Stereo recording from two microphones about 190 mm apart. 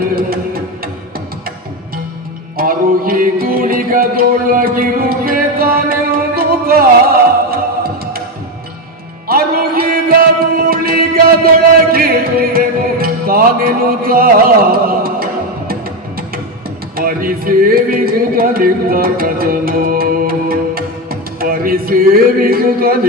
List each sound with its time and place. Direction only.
0.0 s music: 50° right (ahead or behind)
2.6 s music: 50° right (ahead or behind)
9.2 s music: 50° right (ahead or behind)
16.9 s a sound: 50° right (ahead or behind)